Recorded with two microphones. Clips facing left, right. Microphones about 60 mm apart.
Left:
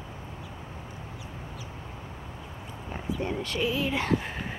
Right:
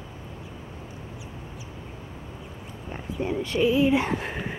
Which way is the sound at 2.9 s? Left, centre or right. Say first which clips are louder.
Right 2 dB; centre.